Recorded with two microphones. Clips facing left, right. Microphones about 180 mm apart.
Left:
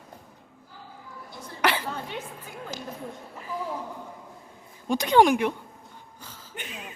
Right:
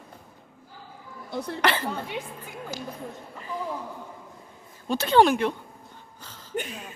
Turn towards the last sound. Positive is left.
turn(degrees=-45)  # may be behind; listen again after turning